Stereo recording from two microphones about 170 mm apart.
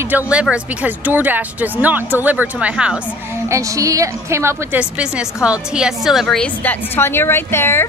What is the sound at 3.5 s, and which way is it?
A woman's voice, 20° right (ahead or behind).